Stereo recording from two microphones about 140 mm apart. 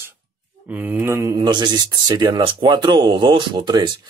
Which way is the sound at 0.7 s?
10° right (ahead or behind).